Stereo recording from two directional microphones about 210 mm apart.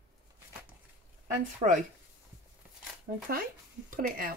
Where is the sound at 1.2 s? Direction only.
35° right (ahead or behind).